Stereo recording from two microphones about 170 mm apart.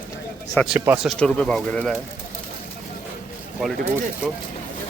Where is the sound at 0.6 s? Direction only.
10° left (ahead or behind).